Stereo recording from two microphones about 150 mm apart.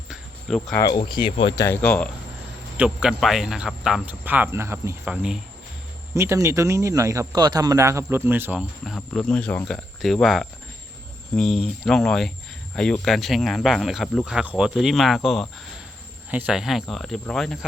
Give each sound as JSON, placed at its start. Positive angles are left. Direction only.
{"t": 0.1, "sound": "a sound", "side_deg": 5}
{"t": 0.9, "sound": "speech", "side_deg": 30}
{"t": 1.6, "sound": "speech", "side_deg": 10}
{"t": 2.7, "sound": "speech", "side_deg": -10}
{"t": 6.1, "sound": "speech", "side_deg": -20}
{"t": 8.8, "sound": "speech", "side_deg": 5}